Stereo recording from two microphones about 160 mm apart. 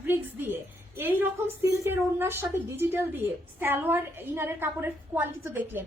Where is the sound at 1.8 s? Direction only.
15° right (ahead or behind).